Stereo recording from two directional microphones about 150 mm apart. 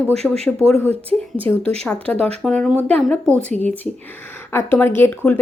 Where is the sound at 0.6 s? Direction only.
15° left (ahead or behind).